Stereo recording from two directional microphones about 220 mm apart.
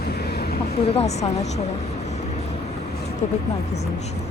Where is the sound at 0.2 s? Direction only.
45° left (ahead or behind).